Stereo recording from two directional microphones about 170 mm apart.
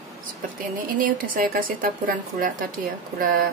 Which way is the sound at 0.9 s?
55° right (ahead or behind).